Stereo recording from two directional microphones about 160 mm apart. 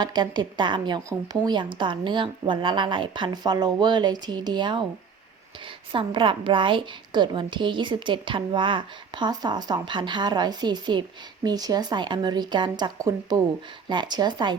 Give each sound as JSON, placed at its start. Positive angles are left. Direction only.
{"t": 0.0, "sound": "a woman's voice", "side_deg": -25}
{"t": 5.9, "sound": "a woman's voice", "side_deg": -30}